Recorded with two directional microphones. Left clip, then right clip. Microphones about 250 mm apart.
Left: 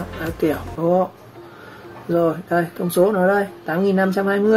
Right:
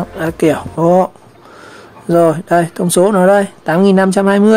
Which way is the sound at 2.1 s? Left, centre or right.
Right.